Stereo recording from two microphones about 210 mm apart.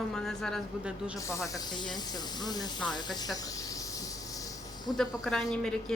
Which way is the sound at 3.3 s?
15° left (ahead or behind).